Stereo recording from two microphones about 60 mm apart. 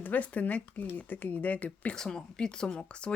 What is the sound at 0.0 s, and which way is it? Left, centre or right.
Speech, left.